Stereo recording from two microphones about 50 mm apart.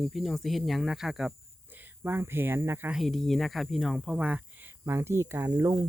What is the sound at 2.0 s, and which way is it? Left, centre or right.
Speech, right.